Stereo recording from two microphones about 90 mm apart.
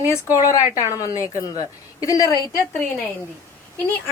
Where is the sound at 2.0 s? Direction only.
40° left (ahead or behind).